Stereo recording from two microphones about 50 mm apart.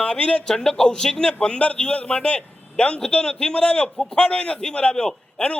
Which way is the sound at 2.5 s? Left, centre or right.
Left.